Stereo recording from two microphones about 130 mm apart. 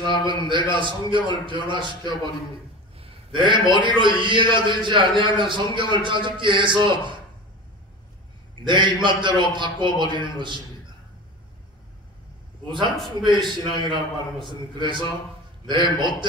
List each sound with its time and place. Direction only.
0.2 s a man's voice: 40° right (ahead or behind)
3.0 s a man's voice: 40° right (ahead or behind)
8.6 s a man's voice: 35° right (ahead or behind)
12.6 s a man's voice: 35° right (ahead or behind)